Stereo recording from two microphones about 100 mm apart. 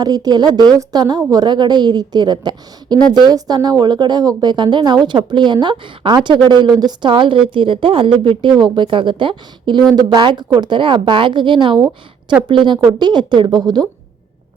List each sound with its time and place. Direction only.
0.0 s a woman's voice: 40° right (ahead or behind)